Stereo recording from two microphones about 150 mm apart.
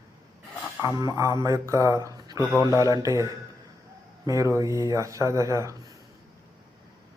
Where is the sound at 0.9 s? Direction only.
20° right (ahead or behind).